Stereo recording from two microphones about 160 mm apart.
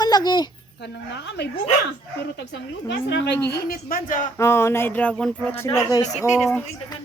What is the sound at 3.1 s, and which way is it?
Speech, 90° left.